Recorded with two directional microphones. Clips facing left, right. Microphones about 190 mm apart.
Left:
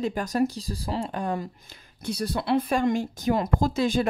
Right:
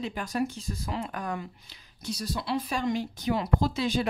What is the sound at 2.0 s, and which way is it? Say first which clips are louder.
Speech: left 5 dB; 55° left (ahead or behind).